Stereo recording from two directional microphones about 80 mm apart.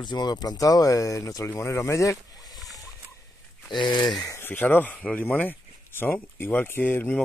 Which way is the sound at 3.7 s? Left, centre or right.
Left.